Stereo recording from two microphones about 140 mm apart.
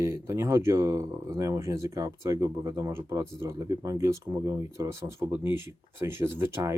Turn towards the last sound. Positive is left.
turn(degrees=-20)  # may be behind; listen again after turning